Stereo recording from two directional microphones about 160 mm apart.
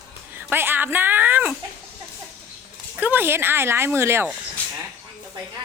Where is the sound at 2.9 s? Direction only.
10° right (ahead or behind).